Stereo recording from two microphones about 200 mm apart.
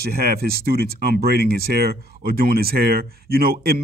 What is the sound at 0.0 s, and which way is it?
Speech, 50° right (ahead or behind).